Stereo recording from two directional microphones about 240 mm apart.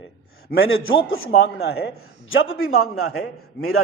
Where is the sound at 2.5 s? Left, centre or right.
Left.